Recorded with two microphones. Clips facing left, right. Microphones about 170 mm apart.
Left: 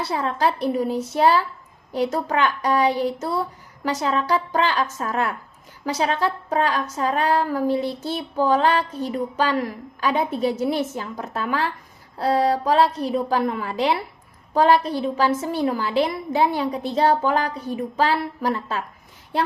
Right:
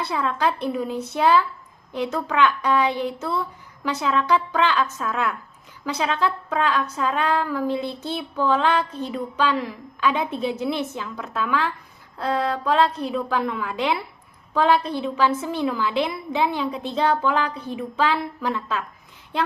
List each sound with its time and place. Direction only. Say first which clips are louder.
0.0 s a woman's voice: left 1 dB; 40° left (ahead or behind)